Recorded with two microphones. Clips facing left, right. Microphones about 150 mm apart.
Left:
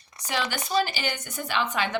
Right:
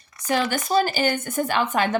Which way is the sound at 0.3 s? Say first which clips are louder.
Right 6 dB; 50° right (ahead or behind).